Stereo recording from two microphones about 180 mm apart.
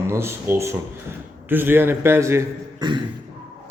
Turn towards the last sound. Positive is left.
turn(degrees=-25)  # may be behind; listen again after turning